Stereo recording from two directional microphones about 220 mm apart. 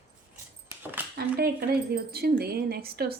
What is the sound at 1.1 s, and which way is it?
A woman's voice, 45° right (ahead or behind).